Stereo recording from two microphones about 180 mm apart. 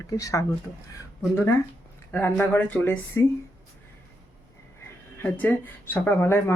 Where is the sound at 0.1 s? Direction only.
20° left (ahead or behind).